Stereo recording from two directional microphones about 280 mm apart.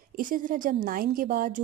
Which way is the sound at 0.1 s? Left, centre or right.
Right.